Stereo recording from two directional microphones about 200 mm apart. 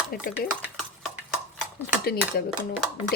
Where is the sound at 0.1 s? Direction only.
50° left (ahead or behind).